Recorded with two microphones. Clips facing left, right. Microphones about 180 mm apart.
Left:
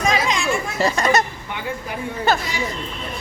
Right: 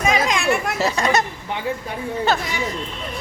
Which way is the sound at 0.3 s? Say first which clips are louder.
Right 2 dB; 60° right (ahead or behind).